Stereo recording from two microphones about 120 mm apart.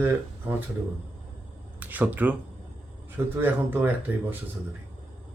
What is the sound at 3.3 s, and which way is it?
Speech, 15° right (ahead or behind).